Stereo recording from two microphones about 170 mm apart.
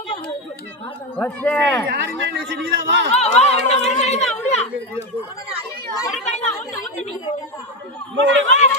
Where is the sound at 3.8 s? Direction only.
40° left (ahead or behind).